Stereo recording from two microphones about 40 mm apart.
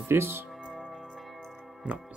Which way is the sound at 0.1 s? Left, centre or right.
Right.